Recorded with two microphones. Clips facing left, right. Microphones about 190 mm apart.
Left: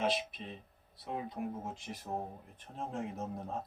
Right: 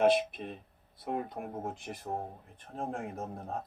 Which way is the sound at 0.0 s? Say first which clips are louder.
Right 8 dB; 55° right (ahead or behind).